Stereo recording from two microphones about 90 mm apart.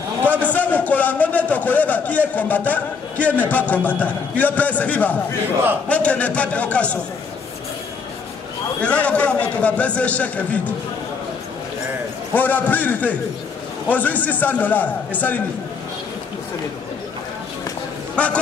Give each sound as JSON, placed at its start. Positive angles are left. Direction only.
{"t": 0.4, "sound": "a man's voice", "side_deg": 15}
{"t": 8.8, "sound": "a man's voice", "side_deg": 15}
{"t": 12.4, "sound": "a man's voice", "side_deg": 20}
{"t": 18.1, "sound": "a sound", "side_deg": 15}